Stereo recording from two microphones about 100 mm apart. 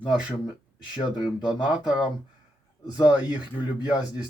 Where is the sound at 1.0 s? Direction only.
50° left (ahead or behind).